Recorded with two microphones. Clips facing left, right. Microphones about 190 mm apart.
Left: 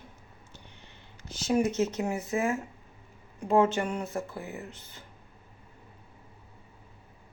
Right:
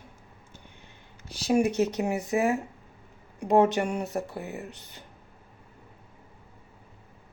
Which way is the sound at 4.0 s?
40° right (ahead or behind).